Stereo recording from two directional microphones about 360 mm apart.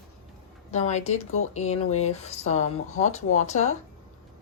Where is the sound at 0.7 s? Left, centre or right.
Centre.